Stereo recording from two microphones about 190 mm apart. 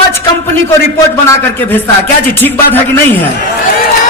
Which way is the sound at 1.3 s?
10° left (ahead or behind).